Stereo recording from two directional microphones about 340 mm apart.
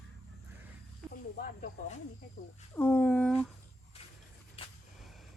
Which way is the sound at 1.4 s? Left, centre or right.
Left.